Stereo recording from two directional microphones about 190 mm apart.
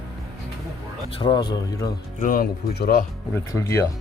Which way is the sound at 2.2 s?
50° left (ahead or behind).